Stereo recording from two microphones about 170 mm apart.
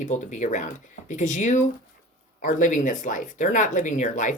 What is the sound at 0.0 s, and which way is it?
Speech, 45° left (ahead or behind).